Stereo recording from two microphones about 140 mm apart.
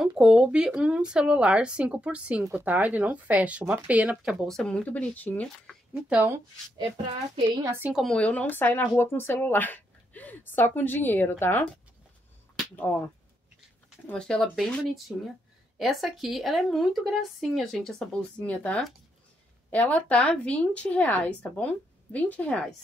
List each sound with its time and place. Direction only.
0.0 s speech: 5° right (ahead or behind); by 5.8 s 10° left (ahead or behind)
5.9 s speech: 15° right (ahead or behind)
6.8 s a woman's voice: 35° right (ahead or behind)
7.8 s speech: 5° right (ahead or behind)
8.1 s speech: 10° left (ahead or behind)
12.7 s speech: 15° left (ahead or behind)